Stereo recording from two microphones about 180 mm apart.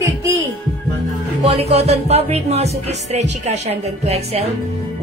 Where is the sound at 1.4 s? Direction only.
35° right (ahead or behind).